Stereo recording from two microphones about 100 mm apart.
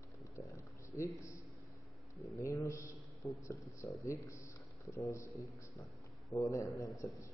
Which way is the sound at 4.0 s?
30° left (ahead or behind).